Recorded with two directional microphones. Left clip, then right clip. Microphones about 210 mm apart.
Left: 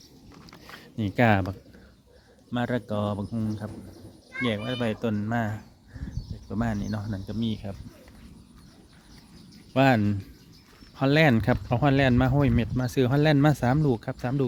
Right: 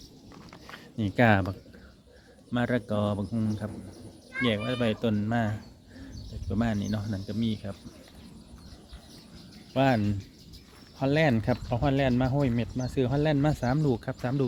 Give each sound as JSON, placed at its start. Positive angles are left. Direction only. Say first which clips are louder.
{"t": 0.7, "sound": "speech", "louder": "left 1 dB", "side_deg": 15}
{"t": 9.7, "sound": "speech", "louder": "left 3 dB", "side_deg": 25}